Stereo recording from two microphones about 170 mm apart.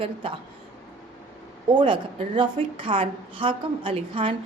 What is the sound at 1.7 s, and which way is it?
A woman's voice, 30° right (ahead or behind).